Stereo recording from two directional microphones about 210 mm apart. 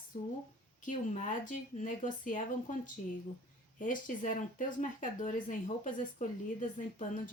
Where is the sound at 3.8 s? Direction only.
40° left (ahead or behind).